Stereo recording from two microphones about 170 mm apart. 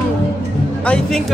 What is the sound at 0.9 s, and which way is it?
Speech, 5° left (ahead or behind).